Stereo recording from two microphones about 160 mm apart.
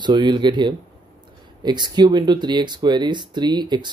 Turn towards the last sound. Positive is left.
turn(degrees=-25)  # may be behind; listen again after turning